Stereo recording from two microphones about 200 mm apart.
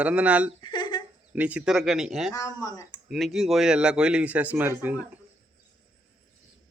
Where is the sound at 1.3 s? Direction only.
5° right (ahead or behind).